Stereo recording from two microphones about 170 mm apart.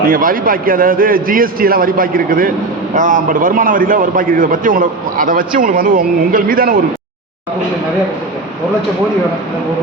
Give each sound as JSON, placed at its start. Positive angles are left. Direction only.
{"t": 0.0, "sound": "a man's voice", "side_deg": -55}